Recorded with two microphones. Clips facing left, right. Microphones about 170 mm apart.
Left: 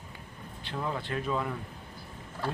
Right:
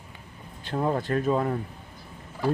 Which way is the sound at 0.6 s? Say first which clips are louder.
Right 8 dB; 45° right (ahead or behind).